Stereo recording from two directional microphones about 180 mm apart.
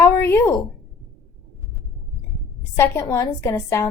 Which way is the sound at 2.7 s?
15° left (ahead or behind).